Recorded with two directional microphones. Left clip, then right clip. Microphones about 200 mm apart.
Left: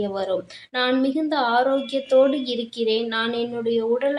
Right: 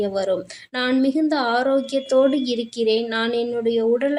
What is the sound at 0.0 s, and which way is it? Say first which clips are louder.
A woman's voice: right 3 dB; 45° right (ahead or behind).